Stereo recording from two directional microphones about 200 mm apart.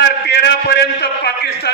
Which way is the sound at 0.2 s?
55° left (ahead or behind).